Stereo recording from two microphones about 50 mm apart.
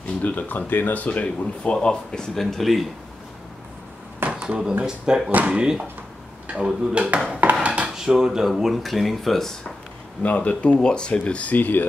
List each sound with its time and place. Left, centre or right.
0.0 s speech: left; by 2.4 s centre
2.5 s speech: centre
4.4 s a sound: right
4.8 s speech: centre
7.6 s dishes: right
7.9 s dishes: centre
8.5 s speech: centre
10.2 s speech: left
11.5 s speech: left